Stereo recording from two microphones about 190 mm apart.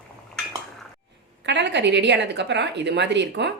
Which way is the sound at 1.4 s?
65° right (ahead or behind).